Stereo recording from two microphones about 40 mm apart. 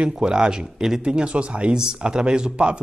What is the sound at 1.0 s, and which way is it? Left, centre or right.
Speech, right.